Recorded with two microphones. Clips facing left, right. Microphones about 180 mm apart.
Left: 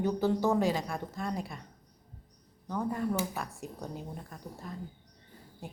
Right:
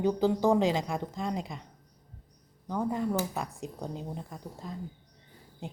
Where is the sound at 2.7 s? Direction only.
15° right (ahead or behind).